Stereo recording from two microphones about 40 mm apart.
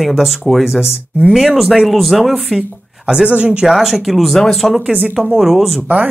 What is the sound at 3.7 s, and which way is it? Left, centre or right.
Speech, centre.